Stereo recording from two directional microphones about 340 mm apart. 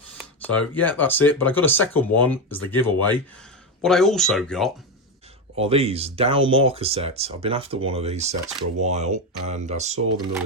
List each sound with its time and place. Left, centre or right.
0.2 s speech: centre
5.5 s speech: centre